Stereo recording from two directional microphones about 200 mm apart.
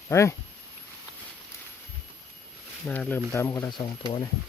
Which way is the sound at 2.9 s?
10° left (ahead or behind).